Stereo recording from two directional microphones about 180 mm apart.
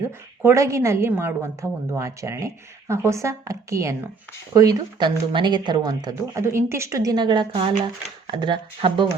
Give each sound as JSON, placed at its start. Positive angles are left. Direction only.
{"t": 0.4, "sound": "speech", "side_deg": -15}